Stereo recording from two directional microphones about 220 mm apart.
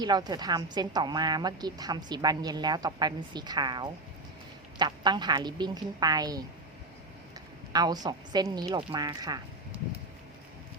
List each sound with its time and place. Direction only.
0.0 s a woman's voice: 20° right (ahead or behind)
7.7 s a woman's voice: 20° right (ahead or behind)